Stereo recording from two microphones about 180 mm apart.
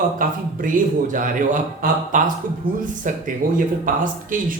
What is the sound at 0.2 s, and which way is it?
A man's voice, 50° right (ahead or behind).